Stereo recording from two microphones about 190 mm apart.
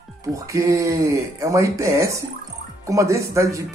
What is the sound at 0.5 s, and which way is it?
Speech, 15° right (ahead or behind).